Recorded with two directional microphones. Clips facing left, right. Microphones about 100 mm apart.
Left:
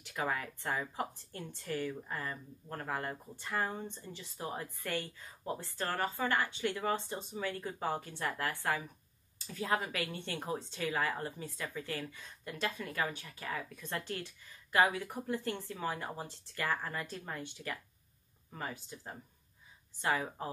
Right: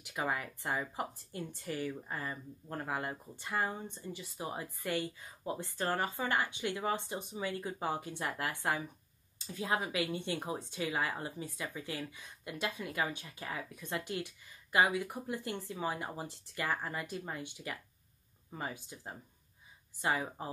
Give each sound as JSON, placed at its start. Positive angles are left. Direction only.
{"t": 0.0, "sound": "speech", "side_deg": -15}